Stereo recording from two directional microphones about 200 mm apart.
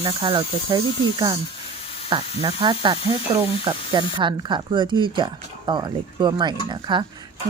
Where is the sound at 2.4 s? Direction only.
25° right (ahead or behind).